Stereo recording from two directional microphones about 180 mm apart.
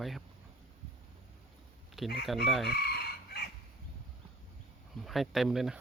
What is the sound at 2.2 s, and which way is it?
Speech, centre (ahead or behind).